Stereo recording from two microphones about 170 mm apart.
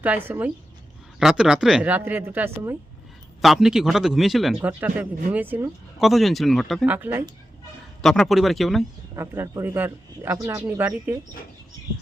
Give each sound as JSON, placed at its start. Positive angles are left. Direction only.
{"t": 0.0, "sound": "speech", "side_deg": -10}
{"t": 3.4, "sound": "speech", "side_deg": 0}
{"t": 6.0, "sound": "speech", "side_deg": 0}
{"t": 6.8, "sound": "speech", "side_deg": -10}
{"t": 8.0, "sound": "speech", "side_deg": 5}
{"t": 9.1, "sound": "speech", "side_deg": -15}